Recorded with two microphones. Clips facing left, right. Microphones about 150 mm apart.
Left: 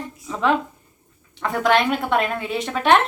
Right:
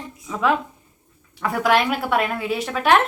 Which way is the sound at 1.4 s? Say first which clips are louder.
Even; 5° right (ahead or behind).